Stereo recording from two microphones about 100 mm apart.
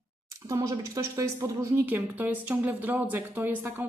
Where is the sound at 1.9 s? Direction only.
15° right (ahead or behind).